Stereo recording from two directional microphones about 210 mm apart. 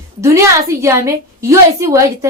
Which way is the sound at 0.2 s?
15° right (ahead or behind).